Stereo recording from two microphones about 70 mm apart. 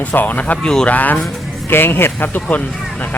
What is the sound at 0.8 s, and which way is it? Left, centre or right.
Speech, left.